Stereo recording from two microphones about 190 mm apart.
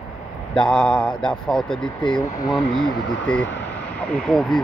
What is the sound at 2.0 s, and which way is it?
Speech, 25° left (ahead or behind).